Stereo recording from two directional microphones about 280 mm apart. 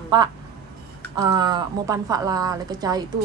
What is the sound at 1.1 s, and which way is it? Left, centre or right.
Speech, centre.